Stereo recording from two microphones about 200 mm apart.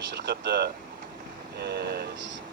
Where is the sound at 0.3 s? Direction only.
55° right (ahead or behind).